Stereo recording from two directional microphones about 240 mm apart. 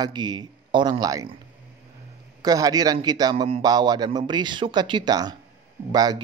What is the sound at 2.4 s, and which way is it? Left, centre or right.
A man's voice, centre.